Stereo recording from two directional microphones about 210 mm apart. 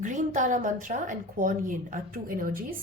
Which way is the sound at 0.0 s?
35° right (ahead or behind).